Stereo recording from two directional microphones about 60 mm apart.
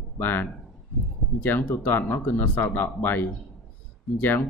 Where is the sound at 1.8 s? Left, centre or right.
Left.